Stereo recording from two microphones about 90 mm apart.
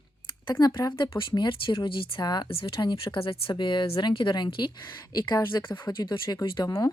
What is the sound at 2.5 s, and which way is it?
Speech, 80° left.